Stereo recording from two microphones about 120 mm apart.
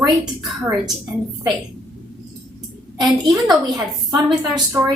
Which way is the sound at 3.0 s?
30° right (ahead or behind).